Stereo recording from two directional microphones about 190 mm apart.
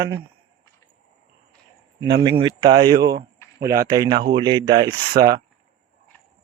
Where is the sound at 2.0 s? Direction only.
65° right (ahead or behind).